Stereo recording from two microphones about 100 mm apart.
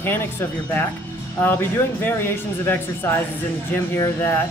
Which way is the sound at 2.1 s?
20° left (ahead or behind).